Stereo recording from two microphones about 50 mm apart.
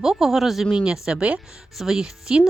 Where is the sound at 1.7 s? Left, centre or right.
Centre.